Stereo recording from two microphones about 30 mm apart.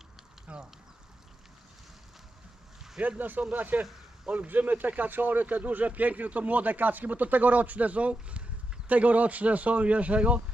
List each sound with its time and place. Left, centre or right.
0.5 s speech: right
3.2 s speech: right
8.9 s speech: right